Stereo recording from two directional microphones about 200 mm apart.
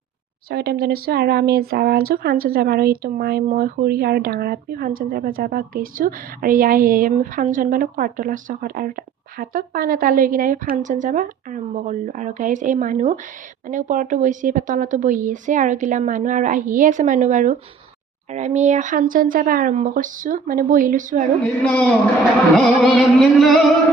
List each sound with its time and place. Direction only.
0.5 s speech: 50° right (ahead or behind)
21.4 s music: 5° left (ahead or behind)